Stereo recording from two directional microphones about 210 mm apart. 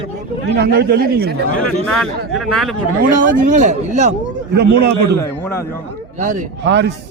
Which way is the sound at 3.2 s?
40° right (ahead or behind).